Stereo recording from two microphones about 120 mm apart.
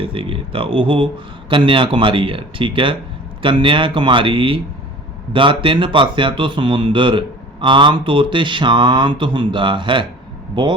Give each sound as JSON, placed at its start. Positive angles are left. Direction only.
{"t": 0.0, "sound": "speech", "side_deg": -50}